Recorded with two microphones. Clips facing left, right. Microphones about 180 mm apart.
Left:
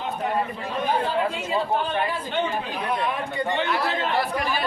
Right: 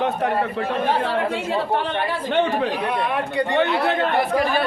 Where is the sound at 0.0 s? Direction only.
70° right (ahead or behind).